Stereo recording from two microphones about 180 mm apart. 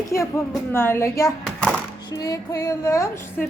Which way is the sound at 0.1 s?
55° left (ahead or behind).